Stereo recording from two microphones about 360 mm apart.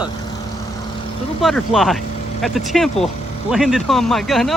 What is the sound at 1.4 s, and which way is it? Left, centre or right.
Speech, centre.